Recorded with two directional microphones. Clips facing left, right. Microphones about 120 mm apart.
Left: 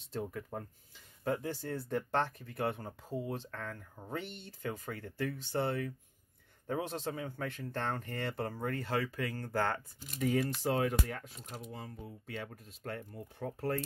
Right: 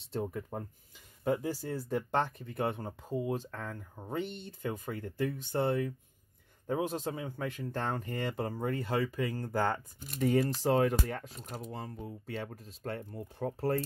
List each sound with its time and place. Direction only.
0.1 s speech: 25° right (ahead or behind)
9.9 s speech: 40° right (ahead or behind)